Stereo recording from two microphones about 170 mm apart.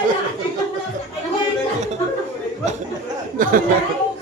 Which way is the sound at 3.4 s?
55° right (ahead or behind).